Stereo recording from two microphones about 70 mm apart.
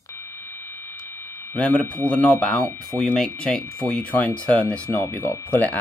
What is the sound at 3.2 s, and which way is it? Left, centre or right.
Speech, centre.